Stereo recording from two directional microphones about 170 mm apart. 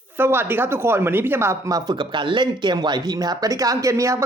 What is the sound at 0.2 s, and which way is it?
Speech, 15° right (ahead or behind).